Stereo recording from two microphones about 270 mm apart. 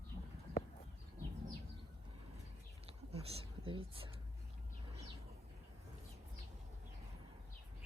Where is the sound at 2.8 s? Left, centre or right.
Right.